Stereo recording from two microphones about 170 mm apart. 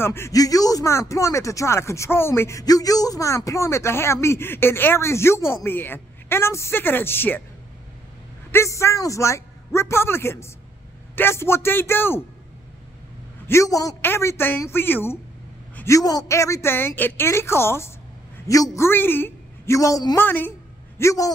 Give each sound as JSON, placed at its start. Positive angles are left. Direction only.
{"t": 0.0, "sound": "speech", "side_deg": 15}
{"t": 8.5, "sound": "speech", "side_deg": 15}
{"t": 13.5, "sound": "a man's voice", "side_deg": 20}